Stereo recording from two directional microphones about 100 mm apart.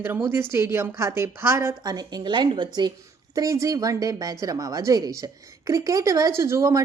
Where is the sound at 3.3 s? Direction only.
35° right (ahead or behind).